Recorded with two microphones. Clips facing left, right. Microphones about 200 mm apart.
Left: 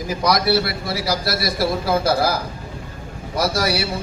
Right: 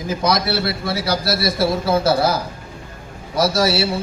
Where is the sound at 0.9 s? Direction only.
Centre (ahead or behind).